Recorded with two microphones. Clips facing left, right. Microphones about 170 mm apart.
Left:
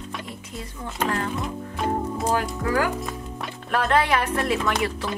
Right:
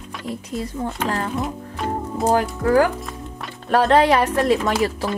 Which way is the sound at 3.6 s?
35° right (ahead or behind).